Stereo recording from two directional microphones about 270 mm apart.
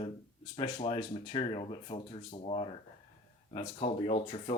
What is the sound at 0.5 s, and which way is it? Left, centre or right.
Speech, centre.